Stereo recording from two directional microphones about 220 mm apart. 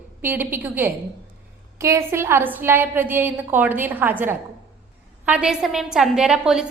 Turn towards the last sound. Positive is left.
turn(degrees=-5)  # may be behind; listen again after turning